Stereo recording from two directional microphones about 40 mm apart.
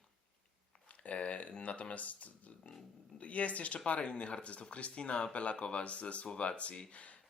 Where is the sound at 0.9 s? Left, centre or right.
Left.